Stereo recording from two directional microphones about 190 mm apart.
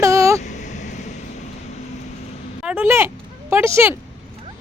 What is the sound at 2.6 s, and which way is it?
Speech, 10° right (ahead or behind).